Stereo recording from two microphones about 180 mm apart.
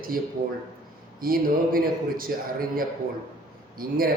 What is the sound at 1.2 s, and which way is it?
Speech, 55° right (ahead or behind).